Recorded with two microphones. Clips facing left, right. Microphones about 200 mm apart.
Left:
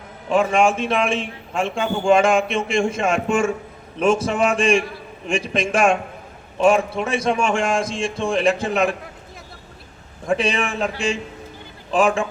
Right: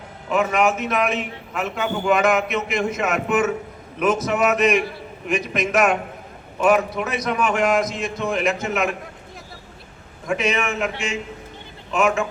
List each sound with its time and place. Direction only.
0.3 s a man's voice: 30° left (ahead or behind)
10.2 s a man's voice: 30° left (ahead or behind)